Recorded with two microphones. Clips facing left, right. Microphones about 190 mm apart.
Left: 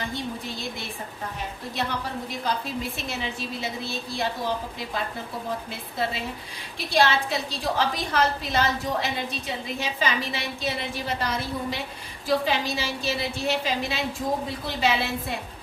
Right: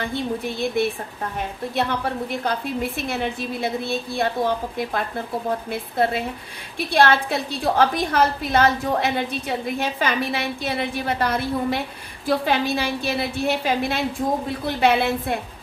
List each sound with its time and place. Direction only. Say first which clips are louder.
0.0 s a woman's voice: right 6 dB; 55° right (ahead or behind)
1.7 s a woman's voice: right 6 dB; 55° right (ahead or behind)